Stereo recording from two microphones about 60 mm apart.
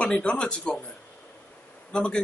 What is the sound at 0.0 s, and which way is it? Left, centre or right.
Speech, centre.